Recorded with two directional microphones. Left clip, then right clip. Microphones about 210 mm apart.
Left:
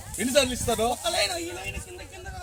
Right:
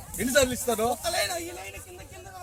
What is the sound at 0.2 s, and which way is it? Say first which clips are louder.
Speech: even; 5° right (ahead or behind).